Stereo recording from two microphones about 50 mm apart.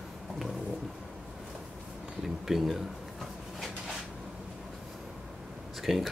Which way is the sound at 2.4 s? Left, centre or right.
Centre.